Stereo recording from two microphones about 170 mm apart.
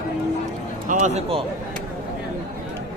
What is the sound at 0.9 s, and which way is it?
Speech, 45° right (ahead or behind).